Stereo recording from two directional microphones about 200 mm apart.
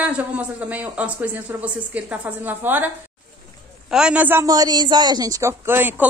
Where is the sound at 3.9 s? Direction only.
5° right (ahead or behind).